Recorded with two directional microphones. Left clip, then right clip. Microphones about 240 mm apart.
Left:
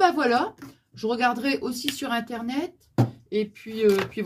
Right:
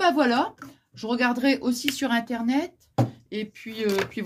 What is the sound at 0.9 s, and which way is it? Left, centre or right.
Speech, right.